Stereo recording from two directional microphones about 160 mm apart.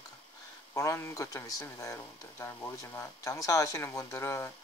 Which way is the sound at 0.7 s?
20° left (ahead or behind).